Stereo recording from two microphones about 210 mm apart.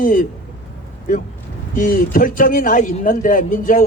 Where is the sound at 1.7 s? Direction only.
40° left (ahead or behind).